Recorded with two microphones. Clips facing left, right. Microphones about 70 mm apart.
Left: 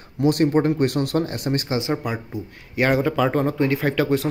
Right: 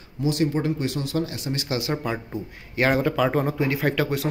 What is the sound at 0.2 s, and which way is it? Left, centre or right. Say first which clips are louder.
Speech: left 5 dB; left.